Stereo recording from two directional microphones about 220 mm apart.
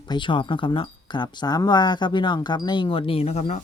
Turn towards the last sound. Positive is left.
turn(degrees=30)  # may be behind; listen again after turning